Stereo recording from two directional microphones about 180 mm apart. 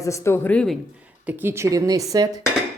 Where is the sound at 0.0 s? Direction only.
15° left (ahead or behind).